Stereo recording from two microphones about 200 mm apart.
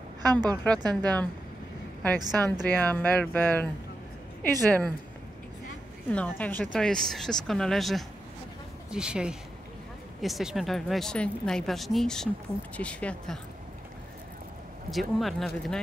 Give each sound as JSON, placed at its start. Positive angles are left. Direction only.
{"t": 0.3, "sound": "a woman's voice", "side_deg": -20}
{"t": 1.0, "sound": "speech", "side_deg": 5}
{"t": 2.1, "sound": "a woman's voice", "side_deg": -20}
{"t": 2.7, "sound": "speech", "side_deg": 5}
{"t": 6.1, "sound": "speech", "side_deg": 5}
{"t": 14.9, "sound": "speech", "side_deg": 0}